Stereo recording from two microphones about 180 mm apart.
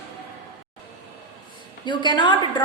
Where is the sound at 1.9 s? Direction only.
25° left (ahead or behind).